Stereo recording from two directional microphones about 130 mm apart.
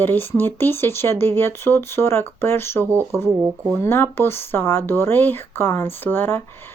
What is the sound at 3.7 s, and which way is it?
Speech, 15° left (ahead or behind).